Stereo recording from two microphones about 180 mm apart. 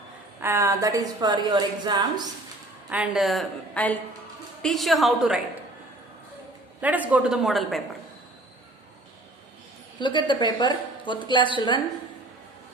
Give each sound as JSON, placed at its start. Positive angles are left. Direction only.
{"t": 0.3, "sound": "a woman's voice", "side_deg": -15}
{"t": 2.9, "sound": "a woman's voice", "side_deg": -5}
{"t": 6.8, "sound": "a woman's voice", "side_deg": -10}
{"t": 10.0, "sound": "a woman's voice", "side_deg": 25}